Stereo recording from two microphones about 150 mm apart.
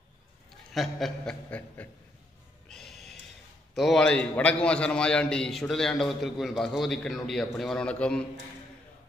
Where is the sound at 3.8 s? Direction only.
5° left (ahead or behind).